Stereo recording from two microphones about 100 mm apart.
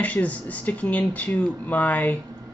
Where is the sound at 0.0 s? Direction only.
15° left (ahead or behind).